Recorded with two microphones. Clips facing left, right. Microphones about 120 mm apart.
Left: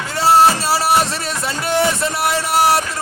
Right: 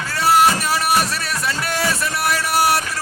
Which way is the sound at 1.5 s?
25° left (ahead or behind).